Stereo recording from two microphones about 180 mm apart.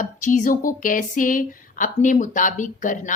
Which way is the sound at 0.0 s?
45° left (ahead or behind).